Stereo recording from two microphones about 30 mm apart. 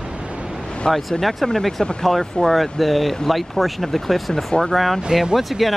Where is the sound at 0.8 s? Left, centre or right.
Left.